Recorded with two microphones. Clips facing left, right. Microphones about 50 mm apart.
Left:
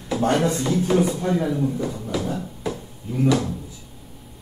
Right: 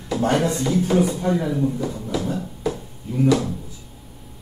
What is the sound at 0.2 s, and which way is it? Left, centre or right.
Speech, centre.